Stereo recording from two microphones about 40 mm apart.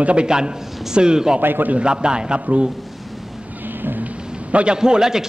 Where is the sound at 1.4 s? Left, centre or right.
Right.